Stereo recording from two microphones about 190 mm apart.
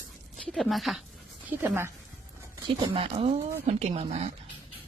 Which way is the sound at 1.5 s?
10° right (ahead or behind).